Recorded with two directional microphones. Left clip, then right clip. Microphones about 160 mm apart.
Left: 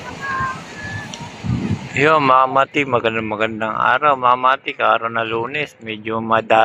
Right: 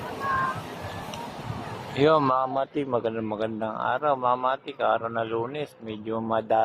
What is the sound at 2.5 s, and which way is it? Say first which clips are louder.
Speech: left 11 dB; 15° left (ahead or behind).